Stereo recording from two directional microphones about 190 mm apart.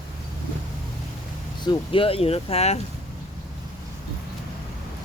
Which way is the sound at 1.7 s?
30° left (ahead or behind).